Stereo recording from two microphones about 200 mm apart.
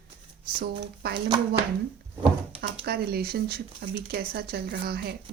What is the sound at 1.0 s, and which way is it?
Speech, 50° right (ahead or behind).